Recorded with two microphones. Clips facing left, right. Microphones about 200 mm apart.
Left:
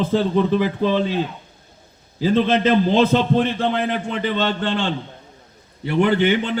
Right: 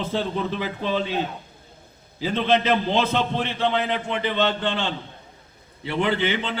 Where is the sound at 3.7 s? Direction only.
50° left (ahead or behind).